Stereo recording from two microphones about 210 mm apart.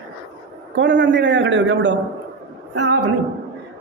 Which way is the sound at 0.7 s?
60° right (ahead or behind).